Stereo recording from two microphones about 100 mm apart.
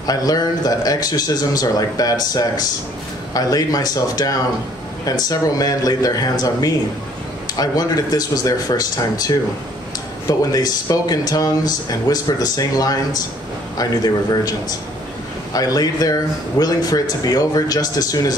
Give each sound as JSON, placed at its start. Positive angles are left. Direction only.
{"t": 0.0, "sound": "speech", "side_deg": 40}
{"t": 15.5, "sound": "speech", "side_deg": 40}